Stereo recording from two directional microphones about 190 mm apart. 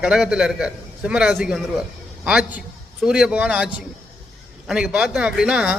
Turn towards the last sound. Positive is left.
turn(degrees=-5)  # may be behind; listen again after turning